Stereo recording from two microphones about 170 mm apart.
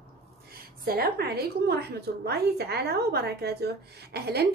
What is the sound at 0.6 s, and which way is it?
A woman's voice, 65° right (ahead or behind).